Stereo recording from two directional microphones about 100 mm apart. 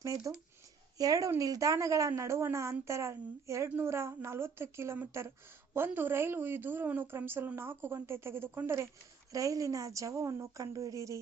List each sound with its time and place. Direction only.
0.0 s a woman's voice: 35° right (ahead or behind)